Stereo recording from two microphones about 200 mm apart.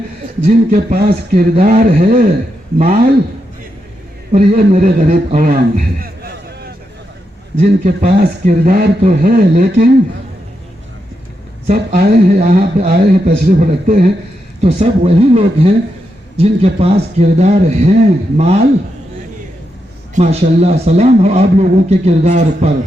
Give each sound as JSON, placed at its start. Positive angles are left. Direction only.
{"t": 0.4, "sound": "a man's voice", "side_deg": -40}
{"t": 1.5, "sound": "speech", "side_deg": -40}
{"t": 4.3, "sound": "a man's voice", "side_deg": -40}
{"t": 7.6, "sound": "a man's voice", "side_deg": -35}
{"t": 11.7, "sound": "a man's voice", "side_deg": -45}
{"t": 12.4, "sound": "a man's voice", "side_deg": -40}
{"t": 14.6, "sound": "speech", "side_deg": -30}
{"t": 20.1, "sound": "speech", "side_deg": -30}